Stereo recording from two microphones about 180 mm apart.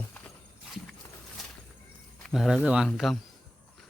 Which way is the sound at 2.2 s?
Centre (ahead or behind).